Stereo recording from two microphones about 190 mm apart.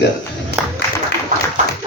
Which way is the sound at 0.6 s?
5° right (ahead or behind).